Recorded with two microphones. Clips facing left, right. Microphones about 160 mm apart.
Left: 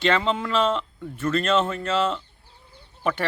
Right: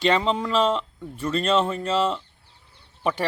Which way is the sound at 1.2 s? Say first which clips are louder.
Left 2 dB; 10° right (ahead or behind).